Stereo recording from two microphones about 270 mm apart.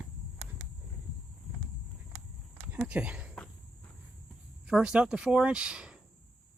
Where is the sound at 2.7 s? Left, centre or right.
Centre.